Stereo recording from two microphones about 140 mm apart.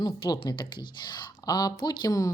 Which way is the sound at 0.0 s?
30° left (ahead or behind).